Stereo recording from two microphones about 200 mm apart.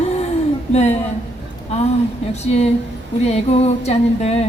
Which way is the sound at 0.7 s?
35° left (ahead or behind).